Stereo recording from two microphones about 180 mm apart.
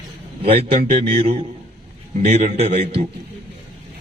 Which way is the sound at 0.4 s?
35° right (ahead or behind).